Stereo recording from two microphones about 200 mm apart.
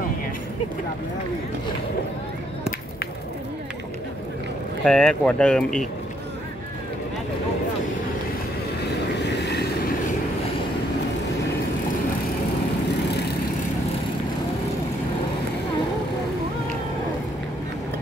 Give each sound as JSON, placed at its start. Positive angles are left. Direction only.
{"t": 4.8, "sound": "speech", "side_deg": 5}
{"t": 9.2, "sound": "vehicle", "side_deg": 55}